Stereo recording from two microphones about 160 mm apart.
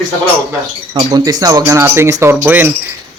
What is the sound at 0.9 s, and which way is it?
Speech, 25° right (ahead or behind).